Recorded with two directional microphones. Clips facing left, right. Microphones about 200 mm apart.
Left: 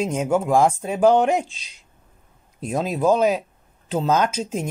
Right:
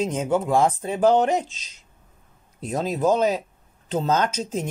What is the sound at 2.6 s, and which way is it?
Speech, 10° left (ahead or behind).